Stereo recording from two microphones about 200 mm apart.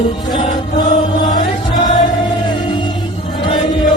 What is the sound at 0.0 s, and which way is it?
Music, 20° left (ahead or behind).